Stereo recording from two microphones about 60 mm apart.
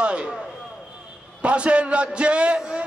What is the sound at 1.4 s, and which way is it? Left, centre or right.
A man's voice, centre.